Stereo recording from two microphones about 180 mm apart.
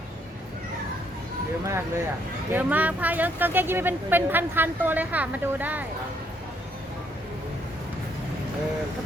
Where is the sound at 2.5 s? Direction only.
10° right (ahead or behind).